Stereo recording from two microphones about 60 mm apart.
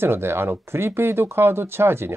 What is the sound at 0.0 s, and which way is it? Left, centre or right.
Speech, right.